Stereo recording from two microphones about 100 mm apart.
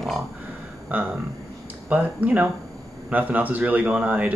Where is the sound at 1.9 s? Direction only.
15° right (ahead or behind).